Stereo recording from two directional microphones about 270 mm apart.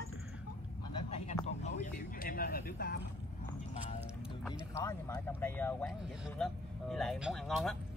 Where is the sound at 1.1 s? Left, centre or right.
Left.